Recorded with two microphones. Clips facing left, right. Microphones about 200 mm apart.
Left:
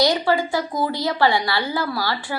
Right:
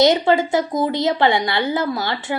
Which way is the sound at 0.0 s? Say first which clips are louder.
Right 4 dB; 20° right (ahead or behind).